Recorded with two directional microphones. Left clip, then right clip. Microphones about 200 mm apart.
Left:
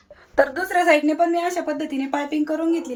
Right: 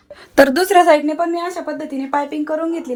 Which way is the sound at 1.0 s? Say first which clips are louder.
Even; 15° right (ahead or behind).